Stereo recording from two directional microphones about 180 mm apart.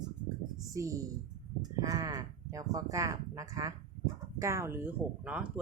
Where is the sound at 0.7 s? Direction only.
20° right (ahead or behind).